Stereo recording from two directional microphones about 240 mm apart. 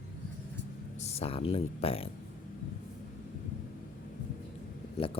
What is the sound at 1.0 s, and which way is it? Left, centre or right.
Speech, left.